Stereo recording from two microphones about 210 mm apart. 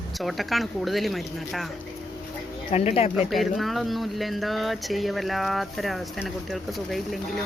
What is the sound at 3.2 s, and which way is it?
Speech, centre (ahead or behind).